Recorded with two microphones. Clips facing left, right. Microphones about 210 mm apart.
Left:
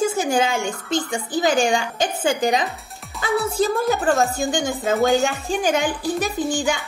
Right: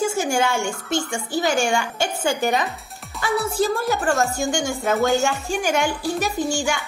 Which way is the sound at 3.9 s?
20° left (ahead or behind).